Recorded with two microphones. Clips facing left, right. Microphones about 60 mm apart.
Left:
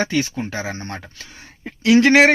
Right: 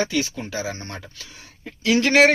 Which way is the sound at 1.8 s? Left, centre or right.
Left.